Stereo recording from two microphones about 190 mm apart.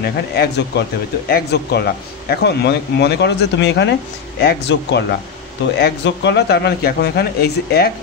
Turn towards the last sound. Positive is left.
turn(degrees=55)  # may be behind; listen again after turning